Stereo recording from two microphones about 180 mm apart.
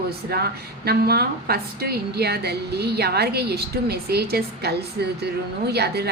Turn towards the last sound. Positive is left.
turn(degrees=-65)  # may be behind; listen again after turning